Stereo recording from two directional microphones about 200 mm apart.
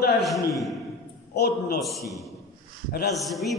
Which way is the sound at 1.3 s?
55° left (ahead or behind).